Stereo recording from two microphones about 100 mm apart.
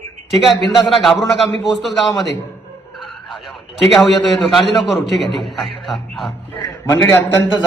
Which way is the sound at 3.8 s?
Centre (ahead or behind).